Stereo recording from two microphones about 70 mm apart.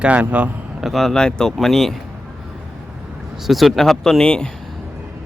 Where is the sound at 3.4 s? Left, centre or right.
Centre.